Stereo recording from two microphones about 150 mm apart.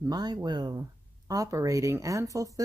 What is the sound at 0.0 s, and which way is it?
Speech, 25° right (ahead or behind).